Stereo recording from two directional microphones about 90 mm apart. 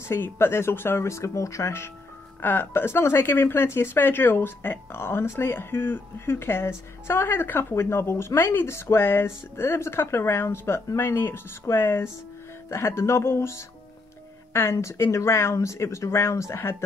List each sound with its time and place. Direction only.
0.1 s speech: 25° left (ahead or behind)